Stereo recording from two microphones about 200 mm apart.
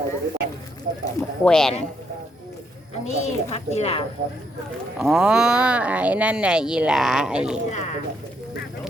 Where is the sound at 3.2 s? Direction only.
30° left (ahead or behind).